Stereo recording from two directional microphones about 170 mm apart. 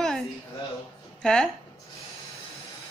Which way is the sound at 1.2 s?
5° left (ahead or behind).